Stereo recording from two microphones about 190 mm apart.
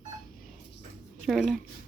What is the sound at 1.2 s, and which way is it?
Speech, centre (ahead or behind).